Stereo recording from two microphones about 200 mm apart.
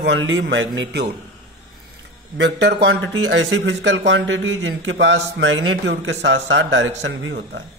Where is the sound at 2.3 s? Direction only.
60° right (ahead or behind).